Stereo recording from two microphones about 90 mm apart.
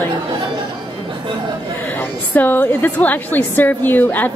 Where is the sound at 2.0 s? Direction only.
20° left (ahead or behind).